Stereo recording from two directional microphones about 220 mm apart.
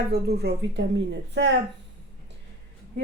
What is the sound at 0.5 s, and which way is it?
A woman's voice, 45° right (ahead or behind).